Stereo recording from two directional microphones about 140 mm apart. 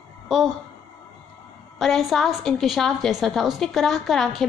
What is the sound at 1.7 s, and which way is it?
A woman's voice, centre (ahead or behind).